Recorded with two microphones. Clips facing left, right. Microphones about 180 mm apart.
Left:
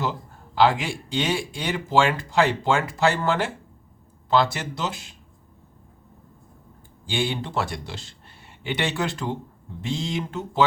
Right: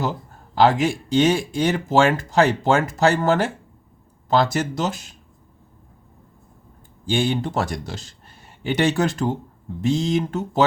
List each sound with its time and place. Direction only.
0.5 s speech: 45° right (ahead or behind)
7.0 s speech: 45° right (ahead or behind)